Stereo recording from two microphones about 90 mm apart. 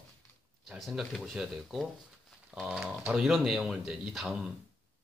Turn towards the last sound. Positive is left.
turn(degrees=-5)  # may be behind; listen again after turning